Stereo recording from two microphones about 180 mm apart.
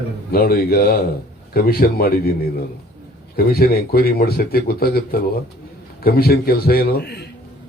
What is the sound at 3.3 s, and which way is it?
A man's voice, 60° left (ahead or behind).